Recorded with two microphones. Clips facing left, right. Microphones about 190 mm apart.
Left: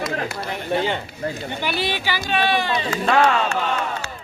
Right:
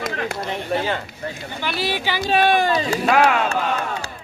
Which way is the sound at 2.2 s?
45° right (ahead or behind).